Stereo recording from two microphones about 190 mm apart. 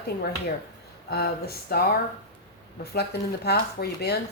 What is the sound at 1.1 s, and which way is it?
Speech, 55° left (ahead or behind).